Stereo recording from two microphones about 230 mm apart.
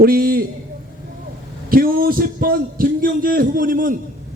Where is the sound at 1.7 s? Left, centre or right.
Right.